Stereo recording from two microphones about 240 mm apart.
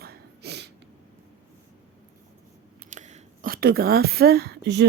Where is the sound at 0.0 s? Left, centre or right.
Right.